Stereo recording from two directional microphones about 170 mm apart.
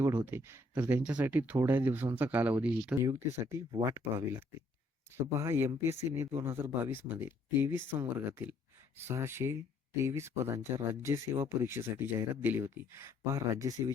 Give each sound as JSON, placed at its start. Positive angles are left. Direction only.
{"t": 0.0, "sound": "speech", "side_deg": -15}